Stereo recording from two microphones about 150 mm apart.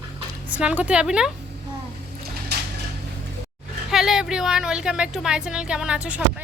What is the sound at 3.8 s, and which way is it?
Speech, centre (ahead or behind).